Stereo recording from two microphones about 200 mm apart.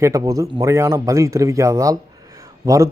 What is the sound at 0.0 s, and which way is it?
Speech, 15° right (ahead or behind).